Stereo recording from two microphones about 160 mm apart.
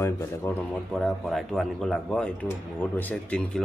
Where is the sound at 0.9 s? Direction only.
Centre (ahead or behind).